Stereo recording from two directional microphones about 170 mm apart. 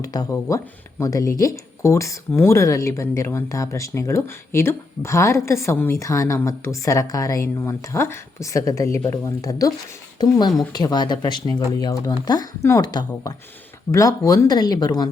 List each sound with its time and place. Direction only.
0.0 s a woman's voice: 20° left (ahead or behind)